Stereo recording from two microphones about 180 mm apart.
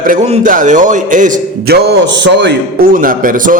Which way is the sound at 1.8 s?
75° right (ahead or behind).